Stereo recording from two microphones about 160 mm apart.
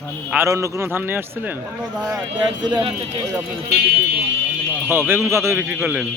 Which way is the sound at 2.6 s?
30° right (ahead or behind).